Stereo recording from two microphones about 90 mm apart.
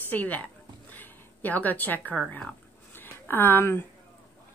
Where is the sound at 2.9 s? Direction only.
25° left (ahead or behind).